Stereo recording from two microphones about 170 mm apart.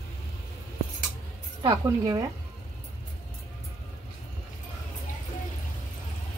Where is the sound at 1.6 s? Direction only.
20° right (ahead or behind).